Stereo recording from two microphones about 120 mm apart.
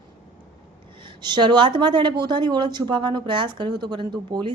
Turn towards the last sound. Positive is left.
turn(degrees=-40)  # may be behind; listen again after turning